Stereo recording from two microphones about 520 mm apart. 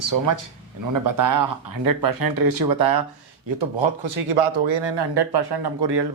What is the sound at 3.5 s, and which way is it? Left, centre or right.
Speech, right.